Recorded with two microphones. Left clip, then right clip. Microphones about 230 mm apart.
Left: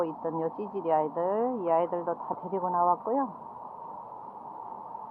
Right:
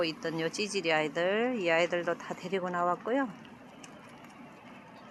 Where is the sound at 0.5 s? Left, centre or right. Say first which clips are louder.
Right 2 dB; left.